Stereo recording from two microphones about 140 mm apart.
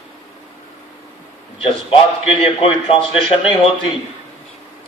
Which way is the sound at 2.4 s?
45° left (ahead or behind).